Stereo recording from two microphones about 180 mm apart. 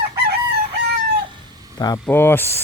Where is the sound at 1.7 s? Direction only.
20° left (ahead or behind).